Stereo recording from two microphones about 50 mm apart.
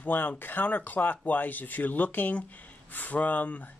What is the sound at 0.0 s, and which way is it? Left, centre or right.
Speech, left.